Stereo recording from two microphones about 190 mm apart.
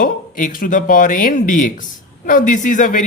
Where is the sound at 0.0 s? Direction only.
45° left (ahead or behind).